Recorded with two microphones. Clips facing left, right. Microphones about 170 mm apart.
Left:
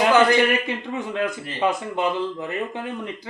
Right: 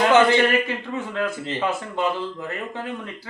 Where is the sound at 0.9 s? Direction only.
20° left (ahead or behind).